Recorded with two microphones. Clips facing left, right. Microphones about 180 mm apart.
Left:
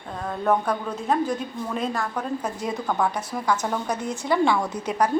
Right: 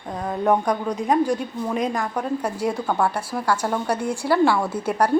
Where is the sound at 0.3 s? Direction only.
15° right (ahead or behind).